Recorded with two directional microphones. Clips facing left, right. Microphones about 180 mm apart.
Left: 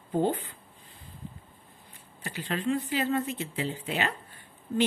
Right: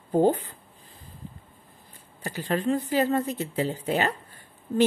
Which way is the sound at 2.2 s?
40° right (ahead or behind).